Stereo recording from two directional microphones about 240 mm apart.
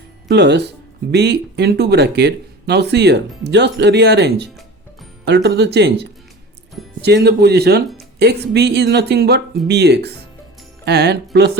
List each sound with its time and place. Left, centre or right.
0.3 s speech: right